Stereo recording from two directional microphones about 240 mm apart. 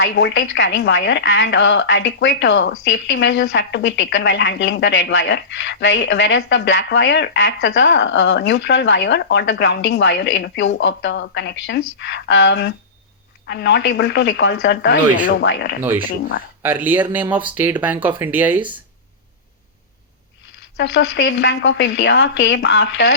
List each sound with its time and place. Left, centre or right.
0.0 s a woman's voice: left
16.6 s speech: centre
20.7 s a woman's voice: left